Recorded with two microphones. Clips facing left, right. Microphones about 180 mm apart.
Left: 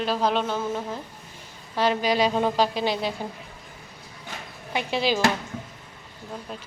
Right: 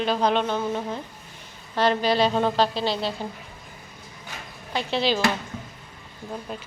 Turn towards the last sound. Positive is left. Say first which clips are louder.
# right 2 dB
turn(degrees=-5)  # may be behind; listen again after turning